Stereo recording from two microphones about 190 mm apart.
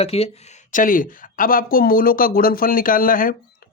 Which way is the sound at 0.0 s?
30° left (ahead or behind).